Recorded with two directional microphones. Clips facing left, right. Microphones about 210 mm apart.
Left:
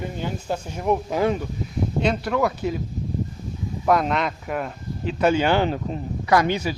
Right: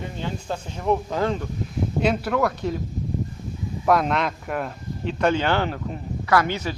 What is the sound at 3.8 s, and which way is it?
Speech, centre (ahead or behind).